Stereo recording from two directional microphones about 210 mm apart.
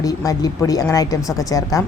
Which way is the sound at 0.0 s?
15° left (ahead or behind).